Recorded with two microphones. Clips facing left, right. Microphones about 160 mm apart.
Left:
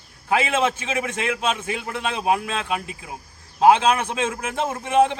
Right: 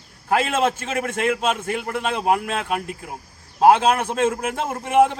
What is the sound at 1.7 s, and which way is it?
A man's voice, 10° right (ahead or behind).